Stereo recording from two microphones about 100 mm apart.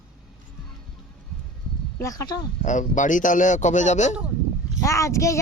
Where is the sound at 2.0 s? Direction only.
35° left (ahead or behind).